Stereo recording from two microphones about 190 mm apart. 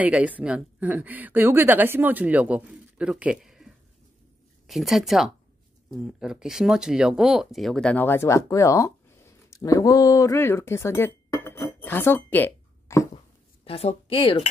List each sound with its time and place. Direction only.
0.0 s speech: 5° right (ahead or behind); by 13.1 s 15° left (ahead or behind)
13.7 s speech: 30° left (ahead or behind)